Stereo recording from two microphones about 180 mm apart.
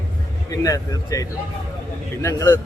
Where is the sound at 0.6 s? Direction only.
20° left (ahead or behind).